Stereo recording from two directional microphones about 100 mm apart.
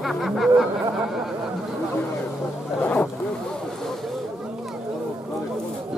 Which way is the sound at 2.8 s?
15° left (ahead or behind).